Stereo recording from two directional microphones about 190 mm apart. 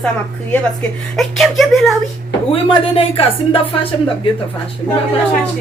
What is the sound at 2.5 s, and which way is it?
Speech, 30° left (ahead or behind).